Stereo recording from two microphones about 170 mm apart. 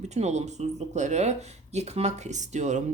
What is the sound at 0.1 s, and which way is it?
Speech, 40° right (ahead or behind).